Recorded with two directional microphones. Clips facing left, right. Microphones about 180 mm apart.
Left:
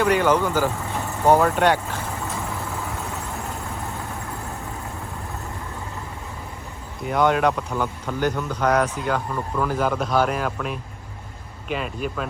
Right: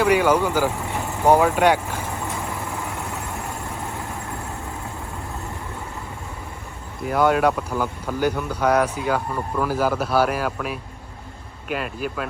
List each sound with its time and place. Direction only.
0.0 s speech: 10° right (ahead or behind)
2.5 s vehicle: 15° right (ahead or behind)
7.0 s speech: 5° right (ahead or behind)